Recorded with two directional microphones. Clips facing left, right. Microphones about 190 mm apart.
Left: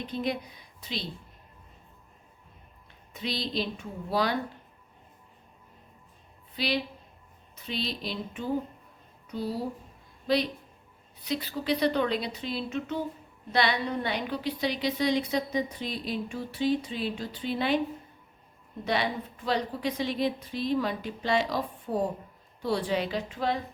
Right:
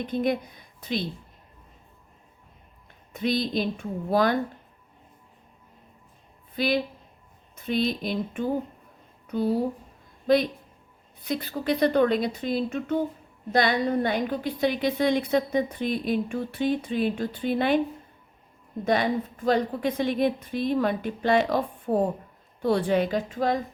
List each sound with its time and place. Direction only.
0.1 s a woman's voice: 50° right (ahead or behind)
3.1 s a woman's voice: 50° right (ahead or behind)
6.6 s a woman's voice: 50° right (ahead or behind)
18.9 s a woman's voice: 45° right (ahead or behind)